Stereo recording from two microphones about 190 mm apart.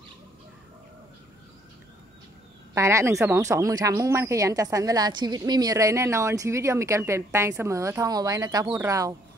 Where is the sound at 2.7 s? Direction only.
15° right (ahead or behind).